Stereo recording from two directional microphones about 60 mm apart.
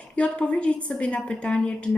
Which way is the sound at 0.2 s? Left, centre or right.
Centre.